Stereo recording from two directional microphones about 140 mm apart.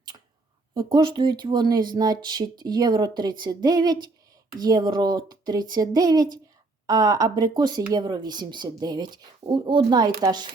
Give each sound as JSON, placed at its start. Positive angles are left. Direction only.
{"t": 0.7, "sound": "speech", "side_deg": -35}